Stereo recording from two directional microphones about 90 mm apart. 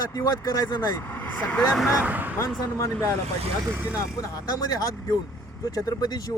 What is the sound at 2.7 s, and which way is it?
Speech, 35° left (ahead or behind).